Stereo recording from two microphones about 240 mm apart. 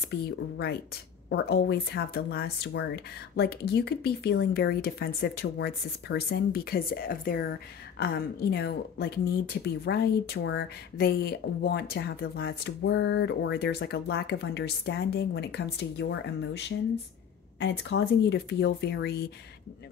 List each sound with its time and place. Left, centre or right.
0.1 s speech: left